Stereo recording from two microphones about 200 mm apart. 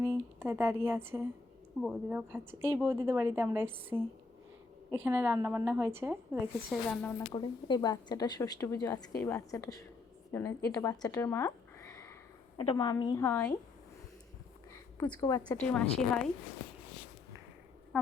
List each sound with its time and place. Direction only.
0.0 s a woman's voice: 10° right (ahead or behind)
6.8 s a woman's voice: 5° left (ahead or behind)
7.3 s a woman's voice: 20° left (ahead or behind)
14.9 s a woman's voice: 5° left (ahead or behind)